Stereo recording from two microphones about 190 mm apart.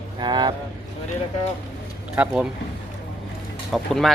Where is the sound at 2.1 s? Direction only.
5° right (ahead or behind).